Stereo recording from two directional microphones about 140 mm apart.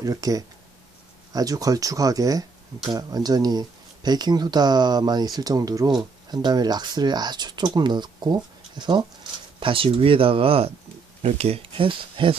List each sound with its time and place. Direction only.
0.0 s speech: 25° right (ahead or behind)